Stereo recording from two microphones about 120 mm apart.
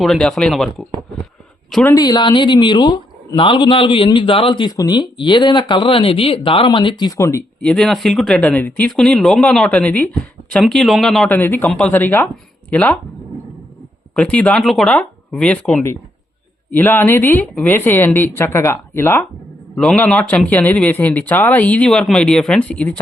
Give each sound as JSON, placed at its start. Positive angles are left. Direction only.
{"t": 0.0, "sound": "speech", "side_deg": 5}
{"t": 2.0, "sound": "a man's voice", "side_deg": 35}
{"t": 7.2, "sound": "speech", "side_deg": 25}
{"t": 7.6, "sound": "speech", "side_deg": 5}
{"t": 11.3, "sound": "speech", "side_deg": 15}
{"t": 14.2, "sound": "speech", "side_deg": 10}
{"t": 19.7, "sound": "speech", "side_deg": 5}